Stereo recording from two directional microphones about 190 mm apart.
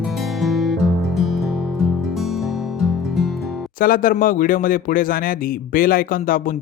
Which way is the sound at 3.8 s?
45° left (ahead or behind).